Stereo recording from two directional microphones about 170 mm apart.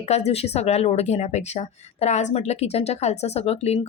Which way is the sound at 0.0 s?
40° left (ahead or behind).